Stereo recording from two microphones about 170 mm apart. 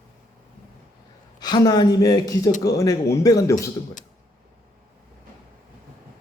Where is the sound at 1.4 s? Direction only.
25° left (ahead or behind).